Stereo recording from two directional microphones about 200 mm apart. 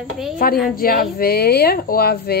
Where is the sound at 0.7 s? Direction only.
45° left (ahead or behind).